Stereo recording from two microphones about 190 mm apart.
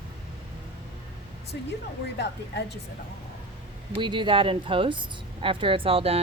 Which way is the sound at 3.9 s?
25° right (ahead or behind).